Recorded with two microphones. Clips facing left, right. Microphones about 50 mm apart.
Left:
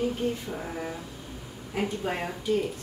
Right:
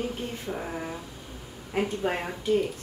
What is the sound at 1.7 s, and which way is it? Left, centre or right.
Speech, right.